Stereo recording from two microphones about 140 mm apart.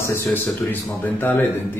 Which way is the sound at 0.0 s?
15° left (ahead or behind).